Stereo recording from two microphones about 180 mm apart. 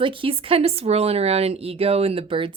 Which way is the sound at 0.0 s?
30° right (ahead or behind).